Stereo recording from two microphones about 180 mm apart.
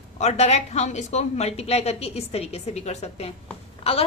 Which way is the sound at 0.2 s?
40° left (ahead or behind).